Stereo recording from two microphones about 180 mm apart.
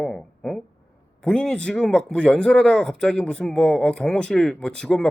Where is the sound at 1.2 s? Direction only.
5° left (ahead or behind).